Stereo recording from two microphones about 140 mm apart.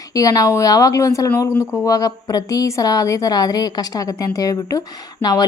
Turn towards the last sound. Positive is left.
turn(degrees=25)  # may be behind; listen again after turning